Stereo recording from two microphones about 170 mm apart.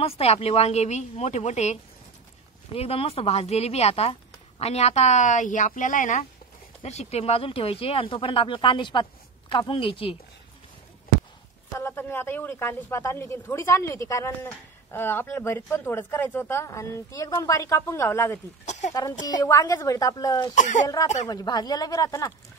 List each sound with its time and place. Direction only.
0.0 s speech: 35° left (ahead or behind)
11.7 s a man's voice: 15° left (ahead or behind)
18.7 s speech: 45° left (ahead or behind)
18.9 s a woman's voice: 20° left (ahead or behind)
20.5 s speech: 45° left (ahead or behind)
20.8 s a woman's voice: 20° left (ahead or behind)